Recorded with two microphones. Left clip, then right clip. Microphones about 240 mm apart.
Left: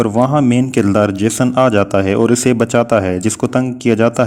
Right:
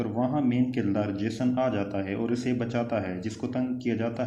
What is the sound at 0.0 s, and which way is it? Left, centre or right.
A man's voice, left.